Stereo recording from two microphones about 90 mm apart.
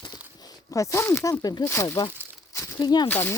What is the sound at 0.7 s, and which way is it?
Speech, 35° left (ahead or behind).